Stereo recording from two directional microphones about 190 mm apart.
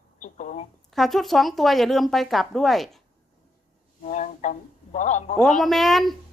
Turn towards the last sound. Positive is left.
turn(degrees=0)  # may be behind; listen again after turning